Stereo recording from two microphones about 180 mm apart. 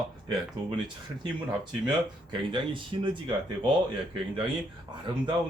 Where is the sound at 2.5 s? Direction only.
25° right (ahead or behind).